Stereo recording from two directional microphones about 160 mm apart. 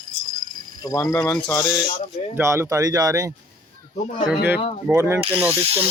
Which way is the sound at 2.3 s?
15° right (ahead or behind).